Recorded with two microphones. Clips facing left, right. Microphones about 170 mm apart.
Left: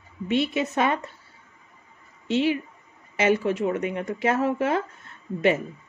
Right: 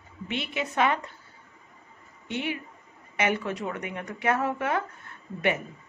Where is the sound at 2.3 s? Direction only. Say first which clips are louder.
Left 9 dB; 25° left (ahead or behind).